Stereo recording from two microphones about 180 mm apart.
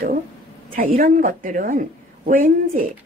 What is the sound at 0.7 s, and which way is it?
Speech, 50° right (ahead or behind).